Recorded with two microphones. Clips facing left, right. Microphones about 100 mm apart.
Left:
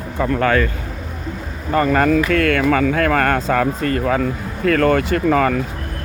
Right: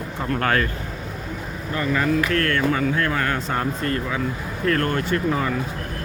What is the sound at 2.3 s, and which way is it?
Speech, 90° left.